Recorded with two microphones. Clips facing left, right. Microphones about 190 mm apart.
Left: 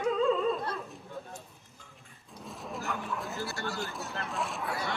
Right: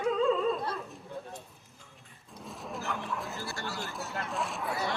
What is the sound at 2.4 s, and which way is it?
Bow-wow, centre (ahead or behind).